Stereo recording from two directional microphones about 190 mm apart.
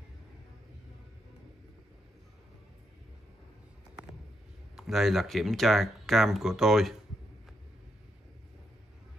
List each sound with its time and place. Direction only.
4.7 s speech: centre (ahead or behind)